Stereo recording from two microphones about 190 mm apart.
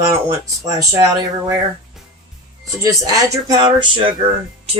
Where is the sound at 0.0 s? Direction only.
15° right (ahead or behind).